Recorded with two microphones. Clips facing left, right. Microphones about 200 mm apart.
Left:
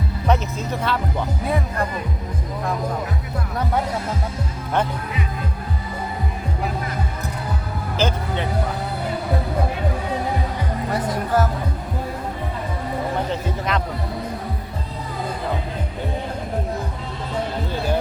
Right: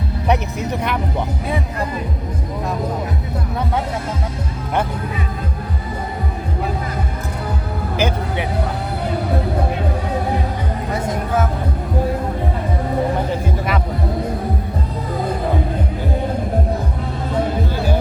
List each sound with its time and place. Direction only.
0.3 s speech: 15° right (ahead or behind)
7.9 s music: 15° right (ahead or behind)
10.9 s music: 25° right (ahead or behind)
13.3 s music: 10° right (ahead or behind)